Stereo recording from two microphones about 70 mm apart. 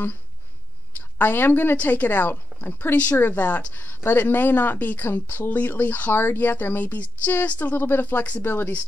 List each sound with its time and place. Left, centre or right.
0.9 s speech: left